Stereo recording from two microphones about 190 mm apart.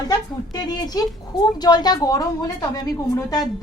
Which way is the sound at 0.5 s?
20° left (ahead or behind).